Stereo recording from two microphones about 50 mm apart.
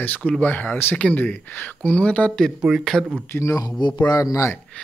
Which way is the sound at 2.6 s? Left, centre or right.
Centre.